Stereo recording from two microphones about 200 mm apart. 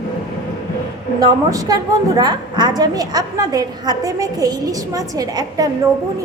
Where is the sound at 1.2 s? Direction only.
20° right (ahead or behind).